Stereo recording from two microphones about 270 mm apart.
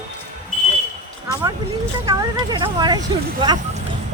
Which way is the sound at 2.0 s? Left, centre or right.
Centre.